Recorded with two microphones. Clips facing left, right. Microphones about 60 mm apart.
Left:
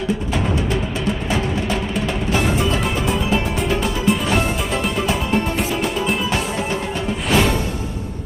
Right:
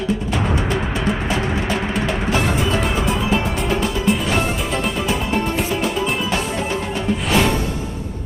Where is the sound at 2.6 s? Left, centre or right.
Centre.